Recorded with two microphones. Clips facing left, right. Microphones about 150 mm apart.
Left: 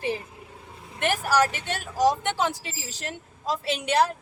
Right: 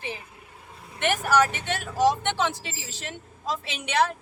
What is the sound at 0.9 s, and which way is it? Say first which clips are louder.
Vehicle: even; 40° left (ahead or behind).